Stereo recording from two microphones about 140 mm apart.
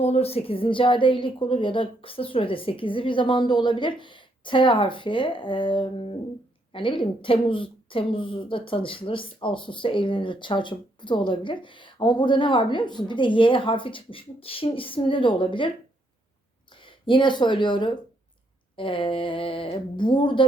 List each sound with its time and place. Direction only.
0.0 s a woman's voice: 50° left (ahead or behind)
16.8 s a woman's voice: 35° left (ahead or behind)